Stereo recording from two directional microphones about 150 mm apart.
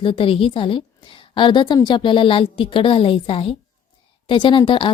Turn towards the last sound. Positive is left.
turn(degrees=35)  # may be behind; listen again after turning